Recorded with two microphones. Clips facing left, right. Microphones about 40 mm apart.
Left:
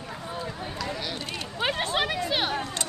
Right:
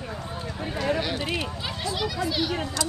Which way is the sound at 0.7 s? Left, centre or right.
Right.